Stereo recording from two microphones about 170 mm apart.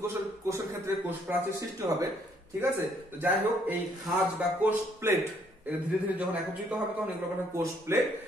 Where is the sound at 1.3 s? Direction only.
20° right (ahead or behind).